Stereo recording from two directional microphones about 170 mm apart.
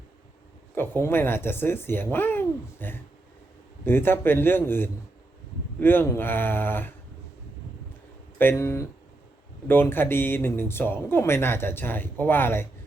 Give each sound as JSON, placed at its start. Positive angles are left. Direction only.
{"t": 0.8, "sound": "speech", "side_deg": 15}
{"t": 8.4, "sound": "speech", "side_deg": 15}